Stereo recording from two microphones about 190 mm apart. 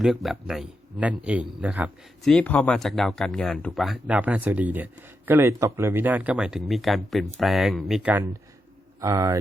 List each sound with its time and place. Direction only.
0.0 s speech: centre (ahead or behind)
2.3 s speech: 10° left (ahead or behind); by 9.4 s 15° right (ahead or behind)